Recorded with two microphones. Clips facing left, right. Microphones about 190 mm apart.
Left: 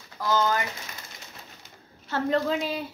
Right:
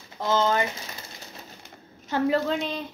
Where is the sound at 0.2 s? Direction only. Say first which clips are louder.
Right 2 dB; 25° right (ahead or behind).